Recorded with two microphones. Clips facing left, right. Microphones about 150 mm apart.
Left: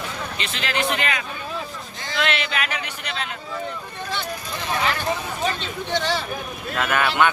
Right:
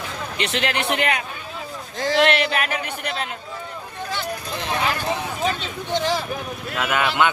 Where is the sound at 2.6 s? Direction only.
50° right (ahead or behind).